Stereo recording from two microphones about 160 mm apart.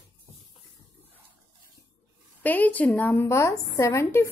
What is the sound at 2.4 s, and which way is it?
A woman's voice, 10° left (ahead or behind).